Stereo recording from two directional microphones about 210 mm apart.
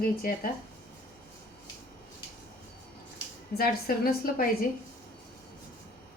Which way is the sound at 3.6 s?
45° left (ahead or behind).